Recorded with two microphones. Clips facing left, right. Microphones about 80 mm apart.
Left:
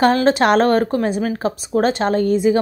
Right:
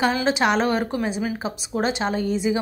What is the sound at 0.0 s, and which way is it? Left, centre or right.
A woman's voice, left.